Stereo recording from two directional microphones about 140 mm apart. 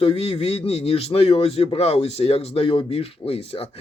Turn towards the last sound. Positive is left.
turn(degrees=45)  # may be behind; listen again after turning